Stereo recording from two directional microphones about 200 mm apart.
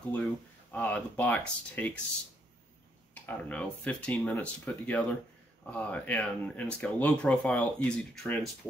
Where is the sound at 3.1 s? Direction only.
10° left (ahead or behind).